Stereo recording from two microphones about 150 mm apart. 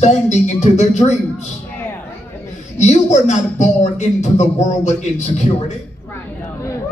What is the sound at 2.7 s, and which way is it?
Speech, 50° left (ahead or behind).